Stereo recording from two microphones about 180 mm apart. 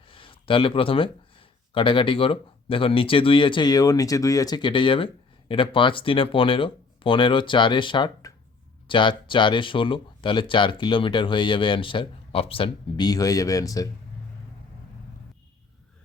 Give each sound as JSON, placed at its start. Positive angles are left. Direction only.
{"t": 0.0, "sound": "speech", "side_deg": 30}